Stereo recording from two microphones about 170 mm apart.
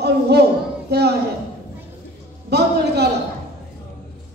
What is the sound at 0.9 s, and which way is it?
Speech, 75° right (ahead or behind).